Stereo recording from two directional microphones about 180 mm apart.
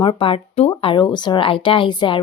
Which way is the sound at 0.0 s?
30° left (ahead or behind).